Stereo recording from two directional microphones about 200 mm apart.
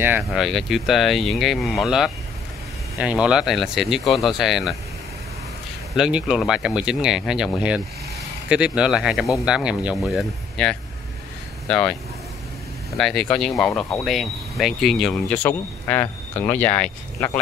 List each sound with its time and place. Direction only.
0.0 s speech: 5° right (ahead or behind)
5.9 s speech: 5° right (ahead or behind)